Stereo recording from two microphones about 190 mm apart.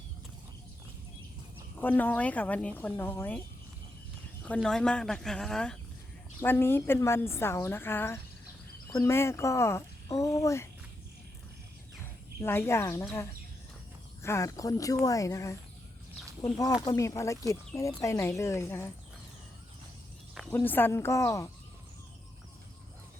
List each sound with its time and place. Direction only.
1.8 s speech: 10° left (ahead or behind)
4.4 s speech: 5° left (ahead or behind)
12.4 s speech: 10° left (ahead or behind)
16.8 s speech: 15° left (ahead or behind)
20.5 s speech: 10° left (ahead or behind)